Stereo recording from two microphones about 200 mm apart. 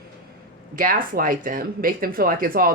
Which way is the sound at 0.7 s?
45° right (ahead or behind).